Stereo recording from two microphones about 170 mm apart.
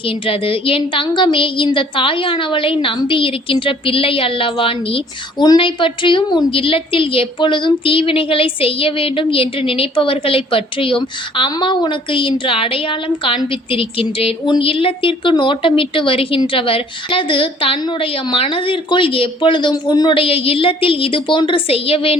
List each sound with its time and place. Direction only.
0.0 s a woman's voice: 30° left (ahead or behind)